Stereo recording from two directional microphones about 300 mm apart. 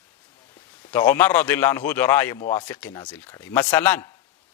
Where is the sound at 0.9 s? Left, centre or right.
Centre.